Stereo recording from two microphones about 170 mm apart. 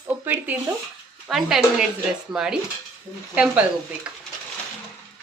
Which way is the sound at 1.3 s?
Centre (ahead or behind).